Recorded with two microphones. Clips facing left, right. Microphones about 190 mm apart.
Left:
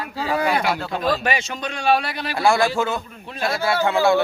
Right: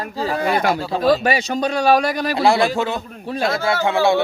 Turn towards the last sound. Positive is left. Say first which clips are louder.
# right 1 dB
turn(degrees=-15)  # may be behind; listen again after turning